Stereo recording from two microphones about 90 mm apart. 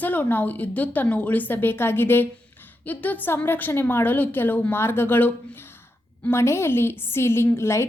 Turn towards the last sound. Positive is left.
turn(degrees=30)  # may be behind; listen again after turning